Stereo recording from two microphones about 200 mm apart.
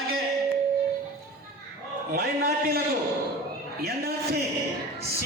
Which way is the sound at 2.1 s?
50° right (ahead or behind).